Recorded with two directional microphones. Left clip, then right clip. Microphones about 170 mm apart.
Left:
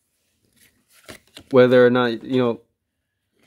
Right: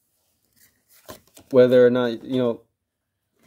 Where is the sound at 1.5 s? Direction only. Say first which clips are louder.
Left 1 dB; 25° left (ahead or behind).